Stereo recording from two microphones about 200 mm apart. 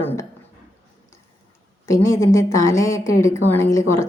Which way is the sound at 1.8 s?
15° left (ahead or behind).